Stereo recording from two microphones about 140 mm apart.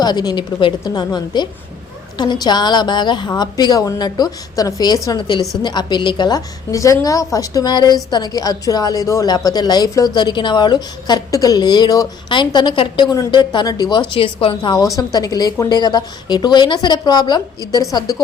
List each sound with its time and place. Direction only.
0.0 s a woman's voice: 30° left (ahead or behind)